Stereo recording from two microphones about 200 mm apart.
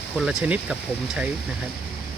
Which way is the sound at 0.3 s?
5° right (ahead or behind).